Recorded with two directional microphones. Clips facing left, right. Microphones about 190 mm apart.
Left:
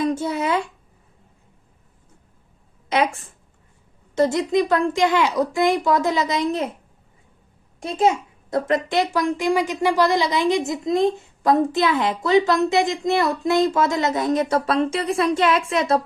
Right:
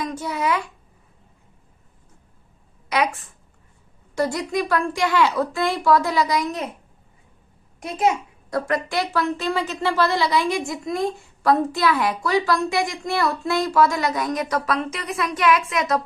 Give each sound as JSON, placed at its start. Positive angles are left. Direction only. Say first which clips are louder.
{"t": 0.0, "sound": "a sound", "louder": "left 4 dB", "side_deg": 30}
{"t": 2.9, "sound": "a child's voice", "louder": "left 2 dB", "side_deg": 25}
{"t": 7.8, "sound": "a child's voice", "louder": "left 2 dB", "side_deg": 25}